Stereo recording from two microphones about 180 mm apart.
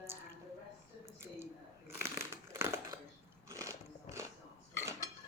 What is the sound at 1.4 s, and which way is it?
Crumpling, 15° right (ahead or behind).